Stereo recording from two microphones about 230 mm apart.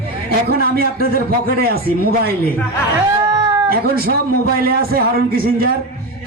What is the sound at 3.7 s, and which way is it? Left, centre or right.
A man's voice, right.